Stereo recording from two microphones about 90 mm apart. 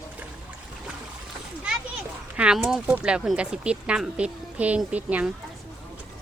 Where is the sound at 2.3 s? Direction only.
10° right (ahead or behind).